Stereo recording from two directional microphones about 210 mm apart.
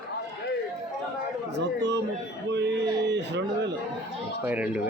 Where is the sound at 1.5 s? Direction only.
55° right (ahead or behind).